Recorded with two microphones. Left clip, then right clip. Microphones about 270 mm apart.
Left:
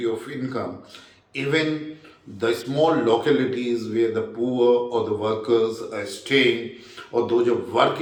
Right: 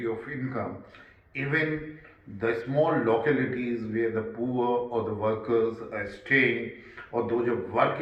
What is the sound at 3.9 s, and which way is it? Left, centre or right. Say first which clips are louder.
Speech: left 6 dB; centre.